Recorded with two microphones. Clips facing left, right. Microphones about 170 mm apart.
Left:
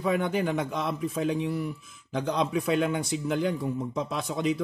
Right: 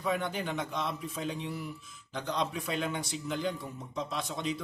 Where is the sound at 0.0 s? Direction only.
55° left (ahead or behind).